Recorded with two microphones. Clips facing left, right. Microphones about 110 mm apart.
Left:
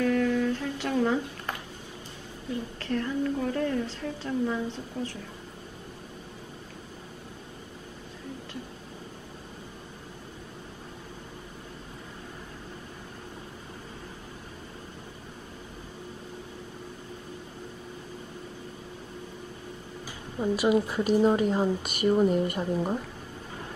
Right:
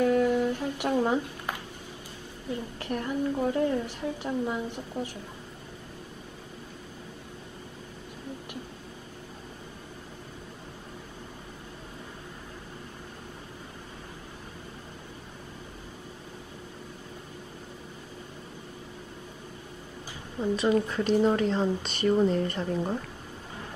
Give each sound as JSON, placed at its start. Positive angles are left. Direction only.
{"t": 0.0, "sound": "humming", "side_deg": -20}
{"t": 2.8, "sound": "a woman's voice", "side_deg": -20}
{"t": 20.3, "sound": "a woman's voice", "side_deg": 15}